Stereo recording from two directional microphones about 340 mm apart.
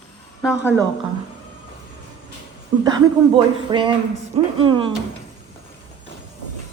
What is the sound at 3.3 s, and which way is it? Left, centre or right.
Speech, centre.